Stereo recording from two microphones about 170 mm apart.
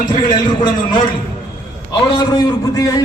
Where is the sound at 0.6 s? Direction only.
25° left (ahead or behind).